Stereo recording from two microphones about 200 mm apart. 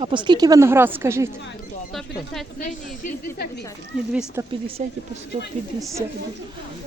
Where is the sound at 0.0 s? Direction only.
25° right (ahead or behind).